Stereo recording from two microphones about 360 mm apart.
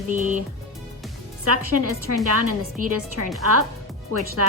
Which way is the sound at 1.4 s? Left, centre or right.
Right.